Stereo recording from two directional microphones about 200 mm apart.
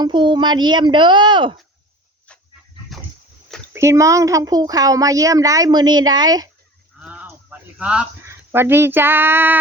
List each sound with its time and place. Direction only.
0.0 s speech: 25° right (ahead or behind)
3.7 s speech: 15° right (ahead or behind)
7.0 s a sound: 5° right (ahead or behind)
8.5 s speech: 10° right (ahead or behind)